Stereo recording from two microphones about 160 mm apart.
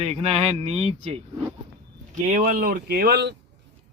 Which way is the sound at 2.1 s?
55° right (ahead or behind).